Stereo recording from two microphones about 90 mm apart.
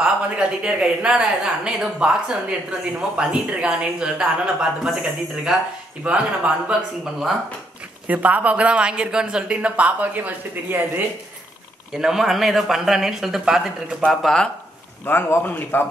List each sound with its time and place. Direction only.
0.0 s a woman's voice: 10° right (ahead or behind)
11.9 s speech: 5° right (ahead or behind)
14.2 s speech: 5° left (ahead or behind)
15.0 s speech: 25° left (ahead or behind)